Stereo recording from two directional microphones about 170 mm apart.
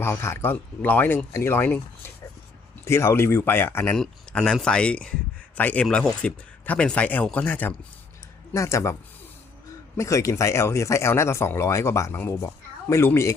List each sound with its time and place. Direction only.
0.0 s speech: 15° left (ahead or behind)
2.8 s speech: 15° left (ahead or behind)
10.0 s speech: 20° left (ahead or behind)